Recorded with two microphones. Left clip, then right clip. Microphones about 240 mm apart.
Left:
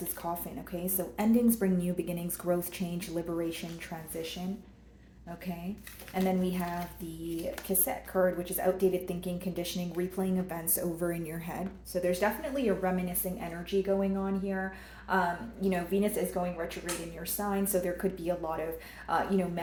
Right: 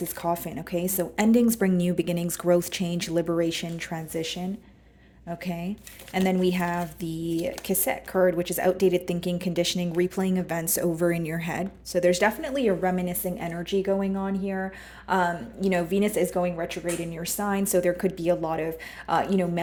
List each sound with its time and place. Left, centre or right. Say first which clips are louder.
0.3 s a woman's voice: right 9 dB; right
6.2 s a woman's voice: right 8 dB; right